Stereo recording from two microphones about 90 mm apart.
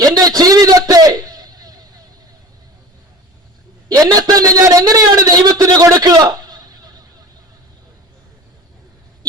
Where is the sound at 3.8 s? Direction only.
45° right (ahead or behind).